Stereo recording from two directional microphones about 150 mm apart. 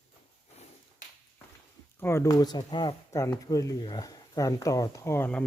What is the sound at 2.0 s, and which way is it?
Speech, 20° left (ahead or behind).